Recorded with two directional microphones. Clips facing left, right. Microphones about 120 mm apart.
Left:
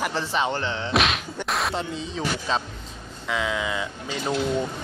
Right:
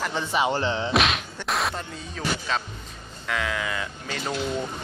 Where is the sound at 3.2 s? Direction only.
10° left (ahead or behind).